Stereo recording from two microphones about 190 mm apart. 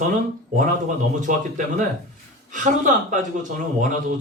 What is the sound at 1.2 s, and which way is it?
A man's voice, 40° right (ahead or behind).